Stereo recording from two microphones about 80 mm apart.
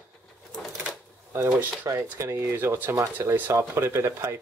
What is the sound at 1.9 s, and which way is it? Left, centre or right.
Speech, right.